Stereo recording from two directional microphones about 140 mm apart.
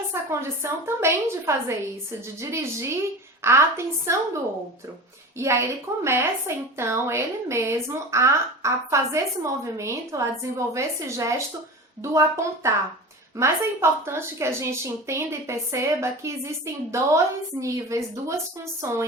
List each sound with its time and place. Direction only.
0.1 s speech: 20° right (ahead or behind)
5.4 s speech: 20° right (ahead or behind)